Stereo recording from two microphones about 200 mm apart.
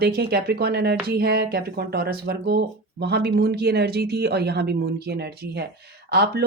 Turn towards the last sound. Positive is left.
turn(degrees=-55)  # may be behind; listen again after turning